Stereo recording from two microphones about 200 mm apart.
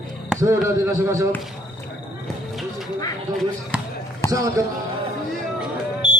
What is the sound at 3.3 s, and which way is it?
Basketball bounce, 15° right (ahead or behind).